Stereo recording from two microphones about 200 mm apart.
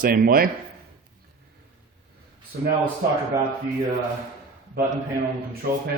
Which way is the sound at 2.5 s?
50° right (ahead or behind).